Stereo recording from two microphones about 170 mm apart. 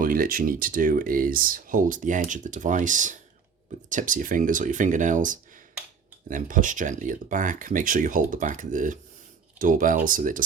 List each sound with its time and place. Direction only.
0.0 s speech: 55° right (ahead or behind)